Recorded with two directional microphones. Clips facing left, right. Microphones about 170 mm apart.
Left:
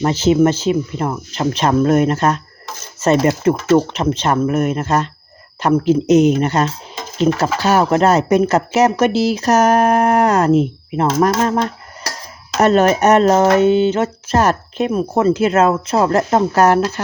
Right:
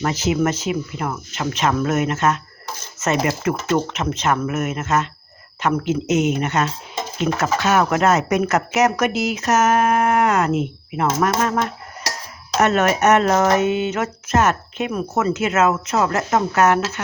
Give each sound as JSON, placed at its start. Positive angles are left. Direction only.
{"t": 0.0, "sound": "speech", "side_deg": 30}